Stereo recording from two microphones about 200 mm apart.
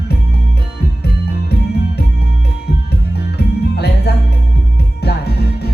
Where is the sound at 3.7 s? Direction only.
55° left (ahead or behind).